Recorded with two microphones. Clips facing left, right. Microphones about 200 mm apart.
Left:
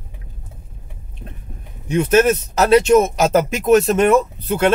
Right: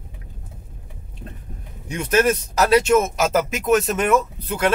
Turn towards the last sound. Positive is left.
turn(degrees=30)  # may be behind; listen again after turning